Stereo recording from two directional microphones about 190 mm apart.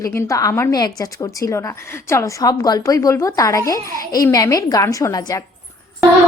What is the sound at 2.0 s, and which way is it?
A woman's voice, 15° left (ahead or behind).